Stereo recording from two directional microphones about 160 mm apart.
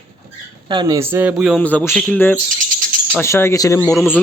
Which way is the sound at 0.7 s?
30° right (ahead or behind).